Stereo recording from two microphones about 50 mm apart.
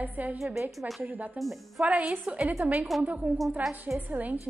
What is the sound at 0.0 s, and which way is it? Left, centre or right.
Speech, right.